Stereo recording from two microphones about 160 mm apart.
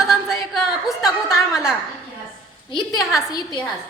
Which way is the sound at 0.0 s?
5° right (ahead or behind).